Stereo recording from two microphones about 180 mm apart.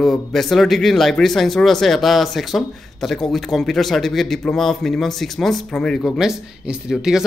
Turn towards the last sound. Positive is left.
turn(degrees=-5)  # may be behind; listen again after turning